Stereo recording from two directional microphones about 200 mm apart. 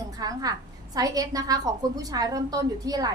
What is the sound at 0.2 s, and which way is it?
A woman's voice, 20° right (ahead or behind).